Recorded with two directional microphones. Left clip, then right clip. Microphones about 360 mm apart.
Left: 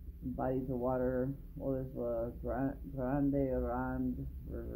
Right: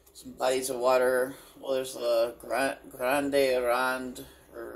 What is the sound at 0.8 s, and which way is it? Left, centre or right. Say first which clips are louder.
Speech: right 12 dB; centre.